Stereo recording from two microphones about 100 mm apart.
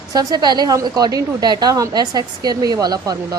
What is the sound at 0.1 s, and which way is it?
A woman's voice, 40° right (ahead or behind).